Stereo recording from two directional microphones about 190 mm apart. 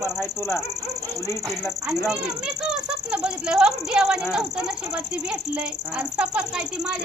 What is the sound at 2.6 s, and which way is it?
Speech, 5° right (ahead or behind).